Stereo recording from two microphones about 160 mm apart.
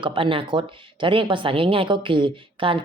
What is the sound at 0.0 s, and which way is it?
Speech, 30° right (ahead or behind).